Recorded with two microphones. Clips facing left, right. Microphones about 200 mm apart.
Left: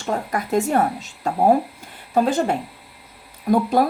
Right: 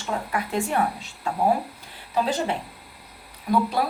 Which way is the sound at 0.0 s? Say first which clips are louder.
Left 4 dB; 40° left (ahead or behind).